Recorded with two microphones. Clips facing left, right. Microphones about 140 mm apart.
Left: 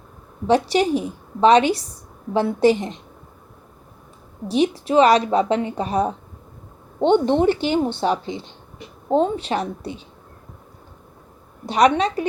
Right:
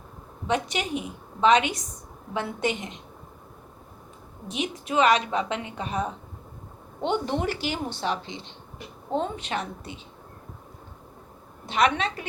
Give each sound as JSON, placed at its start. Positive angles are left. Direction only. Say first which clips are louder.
{"t": 0.4, "sound": "a woman's voice", "louder": "left 10 dB", "side_deg": 35}
{"t": 4.4, "sound": "a woman's voice", "louder": "left 11 dB", "side_deg": 35}
{"t": 11.6, "sound": "a woman's voice", "louder": "left 7 dB", "side_deg": 35}